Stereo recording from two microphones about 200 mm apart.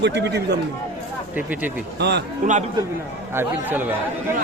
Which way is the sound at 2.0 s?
55° right (ahead or behind).